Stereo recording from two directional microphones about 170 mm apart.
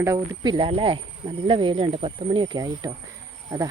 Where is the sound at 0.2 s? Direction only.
30° right (ahead or behind).